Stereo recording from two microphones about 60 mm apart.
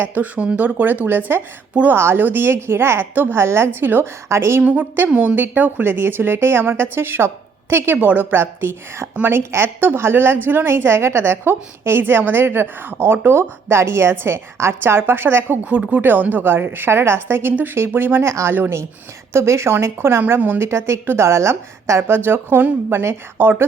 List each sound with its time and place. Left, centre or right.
0.0 s a woman's voice: right
3.4 s a woman's voice: right
4.3 s a woman's voice: right
4.6 s a woman's voice: right
7.9 s speech: right
8.4 s a woman's voice: right